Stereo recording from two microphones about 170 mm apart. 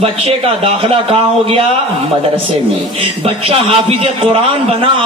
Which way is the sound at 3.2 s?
35° right (ahead or behind).